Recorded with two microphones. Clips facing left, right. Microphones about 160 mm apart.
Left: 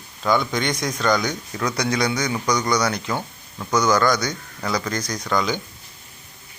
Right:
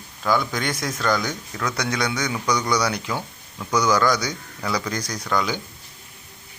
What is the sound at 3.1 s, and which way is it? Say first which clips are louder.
Speech: left 2 dB; 15° left (ahead or behind).